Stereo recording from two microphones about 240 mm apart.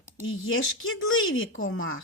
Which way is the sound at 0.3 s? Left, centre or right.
Left.